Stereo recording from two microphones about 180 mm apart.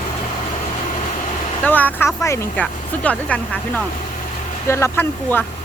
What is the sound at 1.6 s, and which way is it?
Speech, 10° left (ahead or behind).